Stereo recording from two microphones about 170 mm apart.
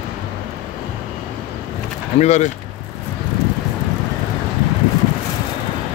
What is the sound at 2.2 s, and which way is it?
Speech, 45° left (ahead or behind).